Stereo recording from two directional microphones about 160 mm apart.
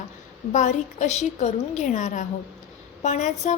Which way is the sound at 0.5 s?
50° left (ahead or behind).